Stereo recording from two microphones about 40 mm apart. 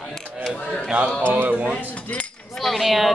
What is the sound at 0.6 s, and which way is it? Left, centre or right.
Speech, left.